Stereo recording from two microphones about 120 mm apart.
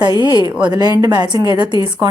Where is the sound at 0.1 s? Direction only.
35° left (ahead or behind).